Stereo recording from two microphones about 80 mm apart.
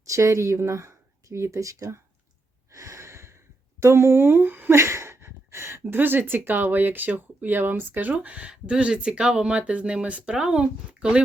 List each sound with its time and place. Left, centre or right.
0.1 s speech: right
2.7 s a sound: right
3.8 s speech: right; by 11.2 s centre